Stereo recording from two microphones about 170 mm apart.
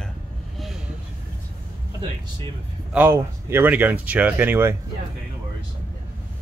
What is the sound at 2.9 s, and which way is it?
Speech, 10° right (ahead or behind).